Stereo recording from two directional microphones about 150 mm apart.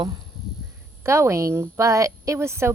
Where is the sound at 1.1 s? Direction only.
20° right (ahead or behind).